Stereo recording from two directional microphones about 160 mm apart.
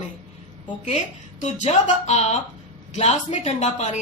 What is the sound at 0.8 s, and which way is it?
Speech, 45° left (ahead or behind).